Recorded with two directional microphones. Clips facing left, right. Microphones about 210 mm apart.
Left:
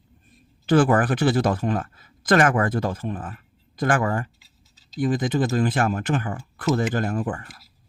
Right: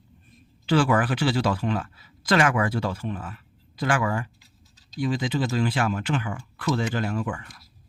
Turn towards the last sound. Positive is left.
turn(degrees=50)  # may be behind; listen again after turning